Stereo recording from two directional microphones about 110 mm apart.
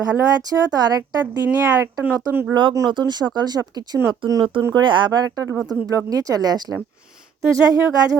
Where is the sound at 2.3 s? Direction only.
20° right (ahead or behind).